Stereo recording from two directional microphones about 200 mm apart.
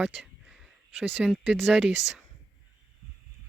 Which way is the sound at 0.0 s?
Centre (ahead or behind).